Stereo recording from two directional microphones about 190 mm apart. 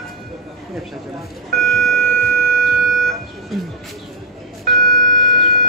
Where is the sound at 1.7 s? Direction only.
Centre (ahead or behind).